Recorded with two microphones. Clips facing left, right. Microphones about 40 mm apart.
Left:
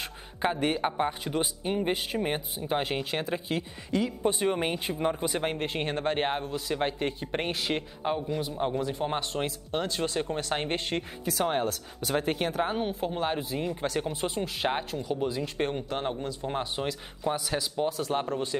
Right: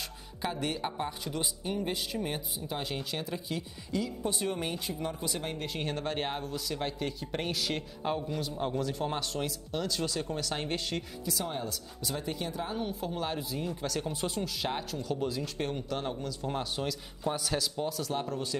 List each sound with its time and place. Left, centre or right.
0.4 s speech: left
8.0 s speech: centre
15.0 s speech: centre